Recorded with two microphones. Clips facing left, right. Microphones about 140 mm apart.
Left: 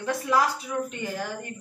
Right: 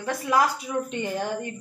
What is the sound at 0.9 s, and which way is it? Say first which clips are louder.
Speech: right 4 dB; 25° right (ahead or behind).